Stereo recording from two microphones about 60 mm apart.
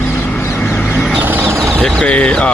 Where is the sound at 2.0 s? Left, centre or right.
Left.